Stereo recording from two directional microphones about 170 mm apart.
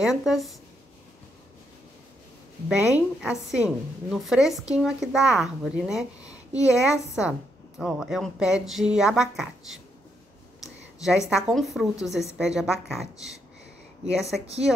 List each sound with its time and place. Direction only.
0.0 s a woman's voice: centre (ahead or behind)
2.8 s a woman's voice: 5° right (ahead or behind)
11.2 s a woman's voice: 5° right (ahead or behind)
14.4 s a woman's voice: 35° right (ahead or behind)